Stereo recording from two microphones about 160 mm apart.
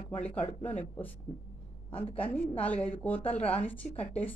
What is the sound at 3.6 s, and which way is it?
Speech, 10° left (ahead or behind).